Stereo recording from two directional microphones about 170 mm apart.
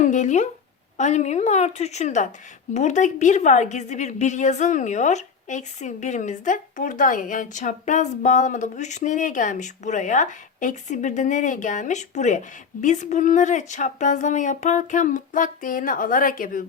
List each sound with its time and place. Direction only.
0.0 s a woman's voice: 45° left (ahead or behind)